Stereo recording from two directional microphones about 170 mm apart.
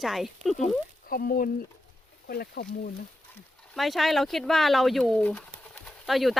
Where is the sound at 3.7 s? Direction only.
Centre (ahead or behind).